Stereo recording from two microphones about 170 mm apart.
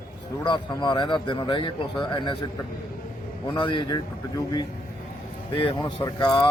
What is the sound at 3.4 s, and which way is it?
A man's voice, 30° left (ahead or behind).